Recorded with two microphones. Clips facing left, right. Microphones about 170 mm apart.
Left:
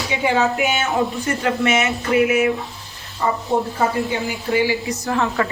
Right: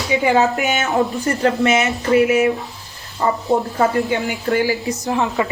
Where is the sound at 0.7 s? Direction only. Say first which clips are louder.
Right 2 dB; 40° right (ahead or behind).